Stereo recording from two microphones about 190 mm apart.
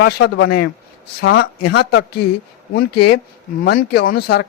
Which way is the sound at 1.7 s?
65° left (ahead or behind).